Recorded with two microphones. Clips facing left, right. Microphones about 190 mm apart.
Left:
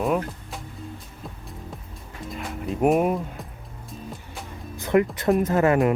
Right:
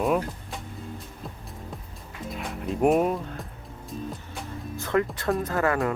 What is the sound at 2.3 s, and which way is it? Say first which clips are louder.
Speech: left 1 dB; centre (ahead or behind).